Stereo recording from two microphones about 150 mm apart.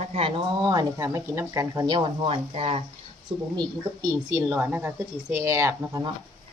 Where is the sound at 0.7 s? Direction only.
25° right (ahead or behind).